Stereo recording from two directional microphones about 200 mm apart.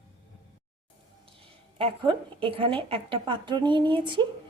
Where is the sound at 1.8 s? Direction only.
25° right (ahead or behind).